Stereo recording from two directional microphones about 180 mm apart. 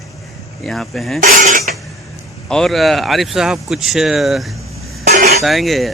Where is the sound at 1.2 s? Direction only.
50° right (ahead or behind).